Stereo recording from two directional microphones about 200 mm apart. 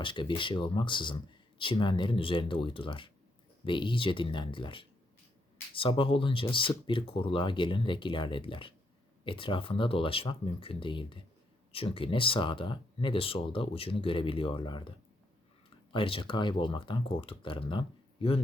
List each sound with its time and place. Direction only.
0.0 s speech: 25° left (ahead or behind)